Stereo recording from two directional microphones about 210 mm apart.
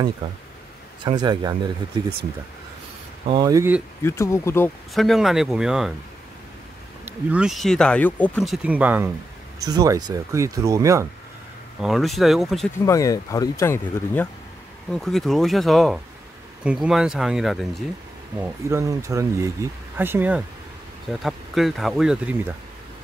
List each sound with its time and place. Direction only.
0.2 s speech: 25° right (ahead or behind)
3.3 s speech: 20° right (ahead or behind)
4.0 s speech: 15° left (ahead or behind)
4.9 s speech: centre (ahead or behind)
7.1 s speech: 5° right (ahead or behind)
11.8 s speech: centre (ahead or behind)
12.8 s speech: 15° left (ahead or behind); by 17.8 s centre (ahead or behind)
18.4 s speech: 10° right (ahead or behind)